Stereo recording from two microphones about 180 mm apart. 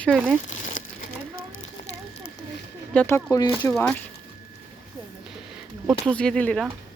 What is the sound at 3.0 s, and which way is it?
Speech, 15° left (ahead or behind).